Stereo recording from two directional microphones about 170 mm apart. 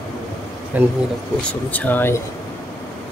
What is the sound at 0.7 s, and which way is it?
Speech, 10° right (ahead or behind).